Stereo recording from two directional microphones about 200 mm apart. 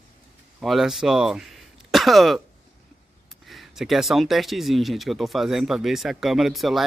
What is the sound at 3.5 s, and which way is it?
Speech, centre (ahead or behind).